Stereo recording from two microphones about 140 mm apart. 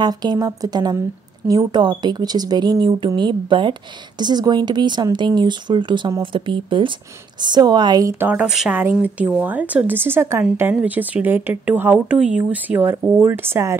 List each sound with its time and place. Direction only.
0.0 s speech: 30° right (ahead or behind); by 8.5 s 15° right (ahead or behind)
8.5 s speech: 5° right (ahead or behind)
8.7 s speech: 15° right (ahead or behind)